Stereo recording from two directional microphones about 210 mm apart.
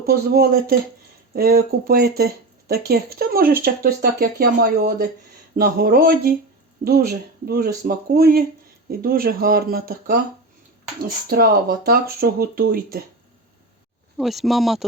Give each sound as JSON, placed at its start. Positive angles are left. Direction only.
{"t": 0.0, "sound": "speech", "side_deg": -45}
{"t": 11.3, "sound": "speech", "side_deg": -45}
{"t": 14.2, "sound": "speech", "side_deg": 0}